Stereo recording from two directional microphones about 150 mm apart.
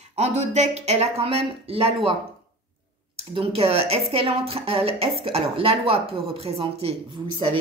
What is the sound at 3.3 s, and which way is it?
Speech, 40° right (ahead or behind).